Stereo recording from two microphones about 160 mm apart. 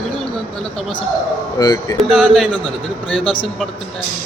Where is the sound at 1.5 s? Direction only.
25° left (ahead or behind).